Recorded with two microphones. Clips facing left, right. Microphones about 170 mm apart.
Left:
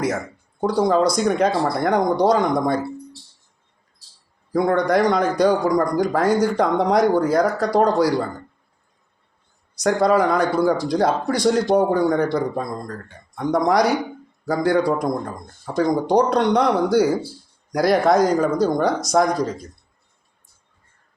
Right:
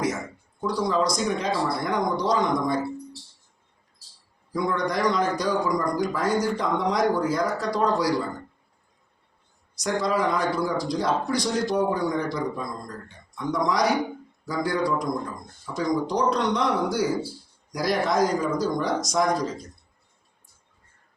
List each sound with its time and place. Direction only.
0.6 s speech: 55° left (ahead or behind)
4.5 s speech: 60° left (ahead or behind)
9.7 s speech: 60° left (ahead or behind)